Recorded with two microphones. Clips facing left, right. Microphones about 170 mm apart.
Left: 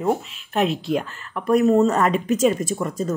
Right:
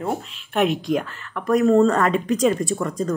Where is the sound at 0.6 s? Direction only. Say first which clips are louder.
Right 1 dB; 30° left (ahead or behind).